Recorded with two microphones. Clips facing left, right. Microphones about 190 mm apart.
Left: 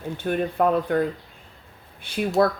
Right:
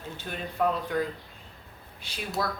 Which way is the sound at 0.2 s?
55° left (ahead or behind).